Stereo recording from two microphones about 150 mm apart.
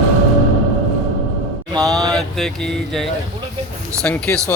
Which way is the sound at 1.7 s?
25° right (ahead or behind).